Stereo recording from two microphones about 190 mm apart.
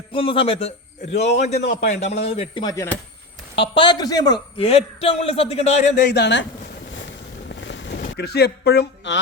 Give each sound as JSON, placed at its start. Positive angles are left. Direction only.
{"t": 0.1, "sound": "a man's voice", "side_deg": 30}
{"t": 2.6, "sound": "speech", "side_deg": 15}
{"t": 3.5, "sound": "a man's voice", "side_deg": 25}
{"t": 6.0, "sound": "a man's voice", "side_deg": 65}
{"t": 7.7, "sound": "a sound", "side_deg": 65}